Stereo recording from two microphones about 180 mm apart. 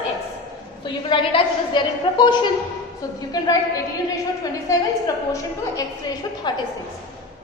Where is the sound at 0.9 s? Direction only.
30° left (ahead or behind).